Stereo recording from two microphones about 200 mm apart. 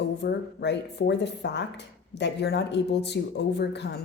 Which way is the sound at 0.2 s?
60° left (ahead or behind).